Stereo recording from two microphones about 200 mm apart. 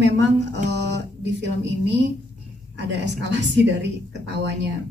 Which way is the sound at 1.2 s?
60° right (ahead or behind).